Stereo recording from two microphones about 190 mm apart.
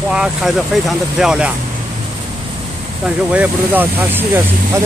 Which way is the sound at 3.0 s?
5° right (ahead or behind).